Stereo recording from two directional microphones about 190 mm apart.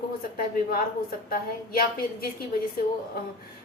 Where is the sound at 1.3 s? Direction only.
50° left (ahead or behind).